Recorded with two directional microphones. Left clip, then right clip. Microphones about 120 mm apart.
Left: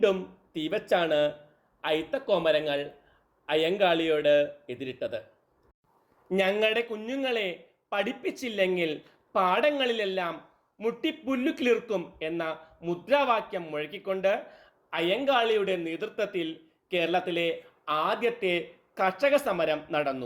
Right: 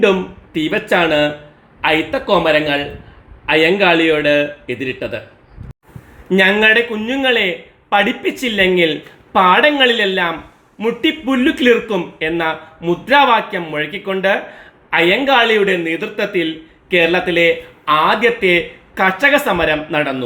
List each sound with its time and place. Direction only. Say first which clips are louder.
0.7 s speech: right 11 dB; 20° left (ahead or behind)
6.2 s speech: right 14 dB; 15° left (ahead or behind)